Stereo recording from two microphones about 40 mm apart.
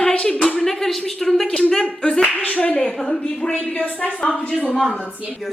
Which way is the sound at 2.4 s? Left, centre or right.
Left.